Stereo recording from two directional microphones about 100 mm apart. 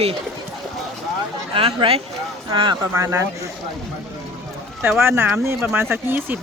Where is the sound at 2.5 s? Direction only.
50° right (ahead or behind).